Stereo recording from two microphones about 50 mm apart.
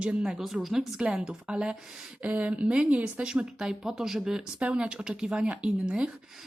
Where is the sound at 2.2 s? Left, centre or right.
Right; by 4.4 s centre.